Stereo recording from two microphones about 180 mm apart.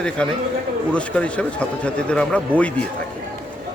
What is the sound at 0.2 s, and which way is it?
A man's voice, 5° left (ahead or behind).